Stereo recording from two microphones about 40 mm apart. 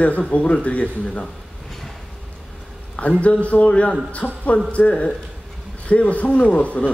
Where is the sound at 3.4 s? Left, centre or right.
Left.